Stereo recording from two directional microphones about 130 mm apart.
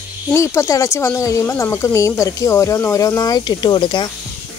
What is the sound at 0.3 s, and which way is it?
Speech, 25° left (ahead or behind).